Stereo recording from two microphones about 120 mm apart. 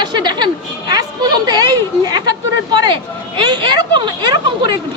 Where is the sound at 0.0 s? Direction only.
40° right (ahead or behind).